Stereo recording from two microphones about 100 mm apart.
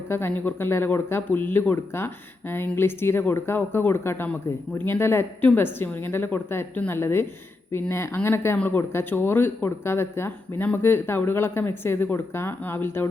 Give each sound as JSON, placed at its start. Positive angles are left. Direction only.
{"t": 0.1, "sound": "speech", "side_deg": 20}